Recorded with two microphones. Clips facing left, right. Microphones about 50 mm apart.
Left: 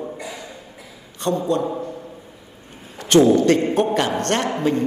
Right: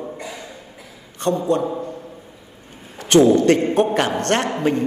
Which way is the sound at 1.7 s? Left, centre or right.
Centre.